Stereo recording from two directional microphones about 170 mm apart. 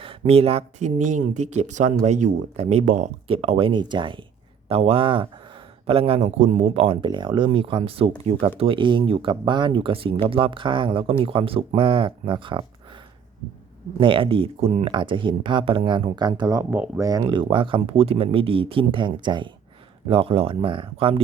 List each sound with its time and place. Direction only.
0.0 s speech: 35° right (ahead or behind)
14.0 s speech: 30° right (ahead or behind)
16.7 s speech: 10° right (ahead or behind)
17.1 s speech: 20° right (ahead or behind)